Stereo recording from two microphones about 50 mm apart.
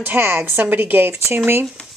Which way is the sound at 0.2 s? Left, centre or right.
Right.